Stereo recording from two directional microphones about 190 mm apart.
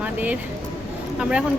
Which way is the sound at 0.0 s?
10° right (ahead or behind).